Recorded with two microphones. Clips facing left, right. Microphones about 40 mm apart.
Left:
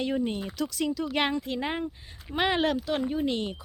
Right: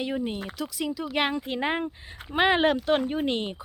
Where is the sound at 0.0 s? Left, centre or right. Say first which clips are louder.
Left 1 dB; centre.